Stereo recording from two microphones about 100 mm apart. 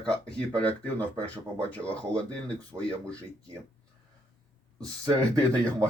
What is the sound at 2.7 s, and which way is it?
Speech, 35° right (ahead or behind).